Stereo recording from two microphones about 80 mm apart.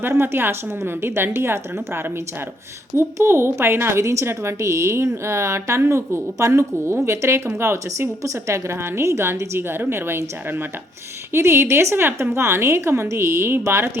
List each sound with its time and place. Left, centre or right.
0.0 s a woman's voice: right